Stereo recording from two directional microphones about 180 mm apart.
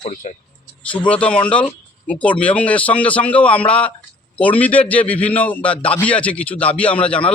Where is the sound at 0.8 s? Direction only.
5° left (ahead or behind).